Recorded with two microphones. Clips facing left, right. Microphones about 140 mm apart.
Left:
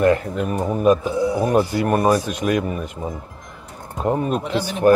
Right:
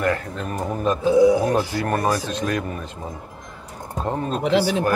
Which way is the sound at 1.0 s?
90° right.